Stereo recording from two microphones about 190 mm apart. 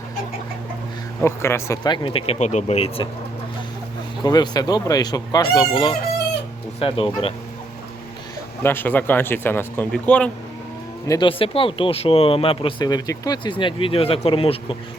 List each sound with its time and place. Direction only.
1.2 s speech: 15° left (ahead or behind); by 3.1 s 30° left (ahead or behind)
4.2 s speech: 20° left (ahead or behind)
8.6 s speech: 10° left (ahead or behind)
11.1 s speech: 25° left (ahead or behind)